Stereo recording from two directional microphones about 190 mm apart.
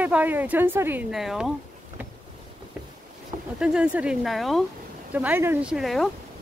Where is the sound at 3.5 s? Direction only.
5° right (ahead or behind).